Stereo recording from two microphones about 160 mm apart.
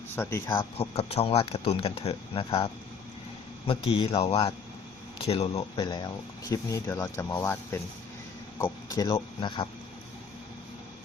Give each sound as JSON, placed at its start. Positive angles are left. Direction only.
{"t": 0.2, "sound": "speech", "side_deg": 15}
{"t": 0.4, "sound": "speech", "side_deg": 35}
{"t": 3.7, "sound": "speech", "side_deg": 35}
{"t": 5.8, "sound": "speech", "side_deg": 25}
{"t": 9.0, "sound": "speech", "side_deg": 30}